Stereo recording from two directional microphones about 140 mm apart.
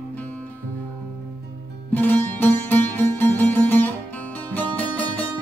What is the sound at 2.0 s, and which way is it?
Music, 15° left (ahead or behind).